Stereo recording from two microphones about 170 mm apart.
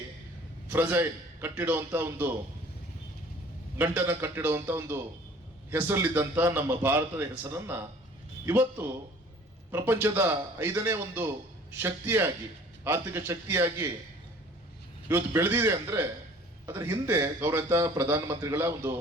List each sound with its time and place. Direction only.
0.7 s a man's voice: 10° right (ahead or behind)
3.9 s a man's voice: 15° right (ahead or behind)
15.0 s a man's voice: 15° right (ahead or behind)